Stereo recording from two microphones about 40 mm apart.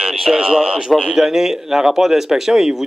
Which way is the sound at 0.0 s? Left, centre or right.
Centre.